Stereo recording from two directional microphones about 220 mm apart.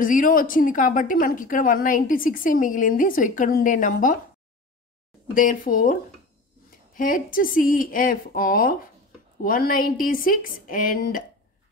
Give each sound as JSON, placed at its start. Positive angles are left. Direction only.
{"t": 0.0, "sound": "a woman's voice", "side_deg": 40}
{"t": 5.3, "sound": "a woman's voice", "side_deg": 35}